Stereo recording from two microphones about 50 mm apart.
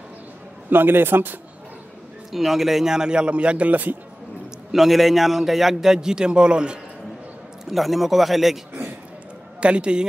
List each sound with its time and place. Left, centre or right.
0.7 s a man's voice: right
2.3 s a man's voice: centre; by 3.9 s right
4.7 s a man's voice: centre
7.7 s speech: centre
9.6 s a man's voice: right